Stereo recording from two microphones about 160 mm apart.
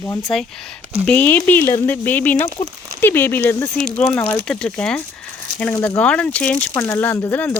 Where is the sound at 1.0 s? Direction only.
10° left (ahead or behind).